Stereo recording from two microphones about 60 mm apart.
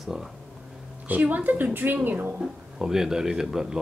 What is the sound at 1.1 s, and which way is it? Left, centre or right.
Speech, right.